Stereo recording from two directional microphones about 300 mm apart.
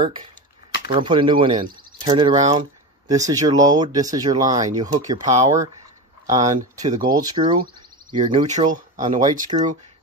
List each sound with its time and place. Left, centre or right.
0.0 s speech: centre
9.0 s speech: centre